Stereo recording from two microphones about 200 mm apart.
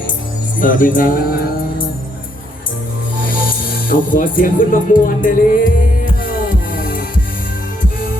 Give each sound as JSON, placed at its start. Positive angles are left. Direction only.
{"t": 0.6, "sound": "music", "side_deg": 45}
{"t": 3.8, "sound": "music", "side_deg": 40}
{"t": 6.7, "sound": "music", "side_deg": 45}